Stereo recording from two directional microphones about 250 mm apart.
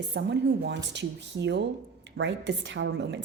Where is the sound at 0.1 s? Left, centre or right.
Right.